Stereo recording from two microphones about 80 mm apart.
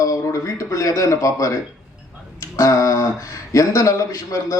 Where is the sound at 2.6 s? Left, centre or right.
Left.